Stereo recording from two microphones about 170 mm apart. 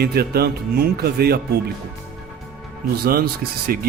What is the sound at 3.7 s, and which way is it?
Speech, 60° right (ahead or behind).